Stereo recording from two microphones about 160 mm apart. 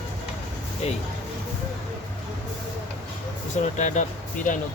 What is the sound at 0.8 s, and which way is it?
Speech, 40° left (ahead or behind).